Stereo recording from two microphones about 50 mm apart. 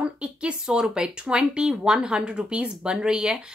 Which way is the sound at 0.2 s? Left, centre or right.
Right.